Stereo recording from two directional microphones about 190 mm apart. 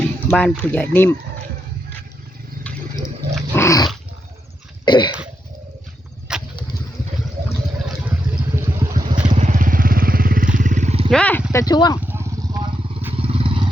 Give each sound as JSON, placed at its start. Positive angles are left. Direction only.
{"t": 0.3, "sound": "speech", "side_deg": 5}
{"t": 2.7, "sound": "a sound", "side_deg": 5}
{"t": 3.5, "sound": "dog", "side_deg": 15}
{"t": 4.9, "sound": "speech", "side_deg": 25}
{"t": 6.3, "sound": "a sound", "side_deg": -5}
{"t": 7.9, "sound": "vehicle", "side_deg": -5}
{"t": 9.2, "sound": "vehicle", "side_deg": -40}
{"t": 11.1, "sound": "a sound", "side_deg": 10}
{"t": 11.5, "sound": "speech", "side_deg": 20}
{"t": 11.9, "sound": "vehicle", "side_deg": -10}